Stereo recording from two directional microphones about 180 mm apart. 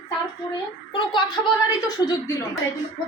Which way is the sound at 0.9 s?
25° left (ahead or behind).